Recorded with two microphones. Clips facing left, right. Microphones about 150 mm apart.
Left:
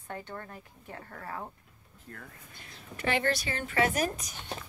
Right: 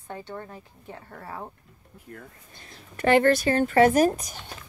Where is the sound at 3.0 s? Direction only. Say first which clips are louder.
Right 10 dB; 50° right (ahead or behind).